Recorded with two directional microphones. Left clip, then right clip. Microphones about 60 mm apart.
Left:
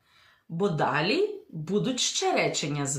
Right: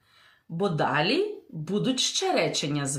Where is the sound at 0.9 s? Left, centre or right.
Right.